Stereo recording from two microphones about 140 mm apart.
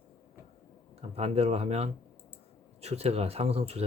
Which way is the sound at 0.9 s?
50° right (ahead or behind).